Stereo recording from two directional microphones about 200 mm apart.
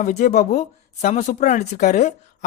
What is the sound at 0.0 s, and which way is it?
Speech, 35° left (ahead or behind).